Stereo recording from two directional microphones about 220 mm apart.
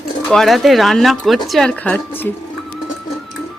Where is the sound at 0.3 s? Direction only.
Centre (ahead or behind).